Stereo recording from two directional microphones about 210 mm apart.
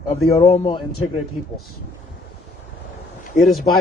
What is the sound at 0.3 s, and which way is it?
Speech, 25° left (ahead or behind).